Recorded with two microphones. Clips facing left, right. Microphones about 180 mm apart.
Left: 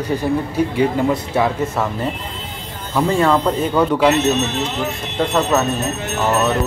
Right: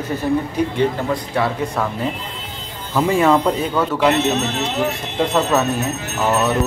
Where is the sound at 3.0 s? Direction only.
10° right (ahead or behind).